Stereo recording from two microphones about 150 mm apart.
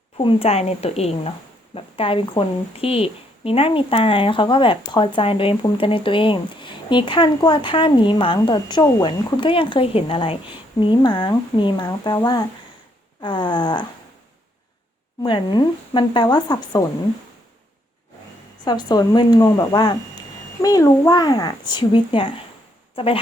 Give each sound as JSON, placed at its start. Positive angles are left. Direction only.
{"t": 0.3, "sound": "a woman's voice", "side_deg": 40}
{"t": 15.2, "sound": "speech", "side_deg": 30}
{"t": 18.6, "sound": "a woman's voice", "side_deg": 30}